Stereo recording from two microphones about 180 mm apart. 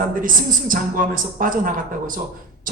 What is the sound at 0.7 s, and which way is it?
A man's voice, 50° right (ahead or behind).